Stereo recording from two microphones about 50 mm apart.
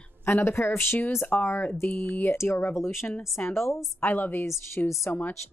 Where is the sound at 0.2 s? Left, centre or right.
Left.